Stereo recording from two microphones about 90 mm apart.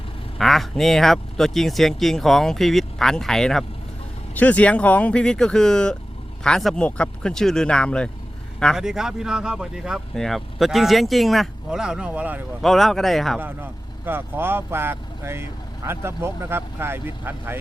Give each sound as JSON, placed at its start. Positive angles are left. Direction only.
{"t": 0.3, "sound": "speech", "side_deg": 0}
{"t": 4.4, "sound": "speech", "side_deg": 15}
{"t": 8.7, "sound": "speech", "side_deg": -5}
{"t": 12.6, "sound": "speech", "side_deg": 0}
{"t": 13.4, "sound": "speech", "side_deg": -25}